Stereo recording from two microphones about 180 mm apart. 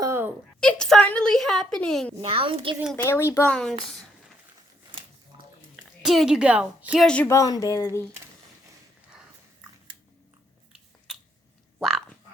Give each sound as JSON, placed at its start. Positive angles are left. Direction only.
{"t": 0.0, "sound": "a sound", "side_deg": -15}
{"t": 0.6, "sound": "speech", "side_deg": 5}
{"t": 2.2, "sound": "a woman's voice", "side_deg": -30}
{"t": 2.9, "sound": "speech", "side_deg": 15}
{"t": 3.6, "sound": "speech", "side_deg": 0}
{"t": 5.7, "sound": "a woman's voice", "side_deg": 0}
{"t": 7.3, "sound": "speech", "side_deg": 20}
{"t": 11.8, "sound": "a sound", "side_deg": 0}